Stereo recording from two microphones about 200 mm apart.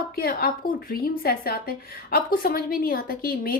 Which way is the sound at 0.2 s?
50° left (ahead or behind).